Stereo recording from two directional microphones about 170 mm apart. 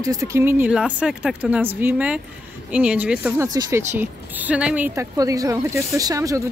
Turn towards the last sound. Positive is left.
turn(degrees=-20)  # may be behind; listen again after turning